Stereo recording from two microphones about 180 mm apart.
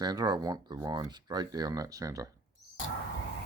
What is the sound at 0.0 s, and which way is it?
Speech, 20° right (ahead or behind).